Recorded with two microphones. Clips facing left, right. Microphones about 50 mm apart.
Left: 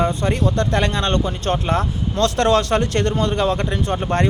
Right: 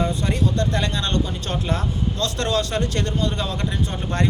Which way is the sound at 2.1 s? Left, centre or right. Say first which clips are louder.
Left 8 dB; left.